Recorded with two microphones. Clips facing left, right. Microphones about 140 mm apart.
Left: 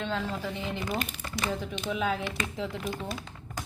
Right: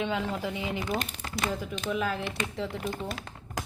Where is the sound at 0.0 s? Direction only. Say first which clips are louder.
Right 2 dB; 15° right (ahead or behind).